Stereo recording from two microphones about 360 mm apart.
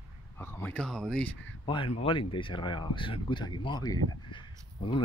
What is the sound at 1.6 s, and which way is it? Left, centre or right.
Speech, centre.